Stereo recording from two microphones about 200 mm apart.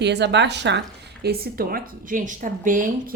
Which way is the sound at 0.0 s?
60° right (ahead or behind).